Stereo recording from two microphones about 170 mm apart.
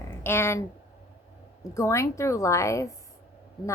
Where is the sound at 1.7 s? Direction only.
20° left (ahead or behind).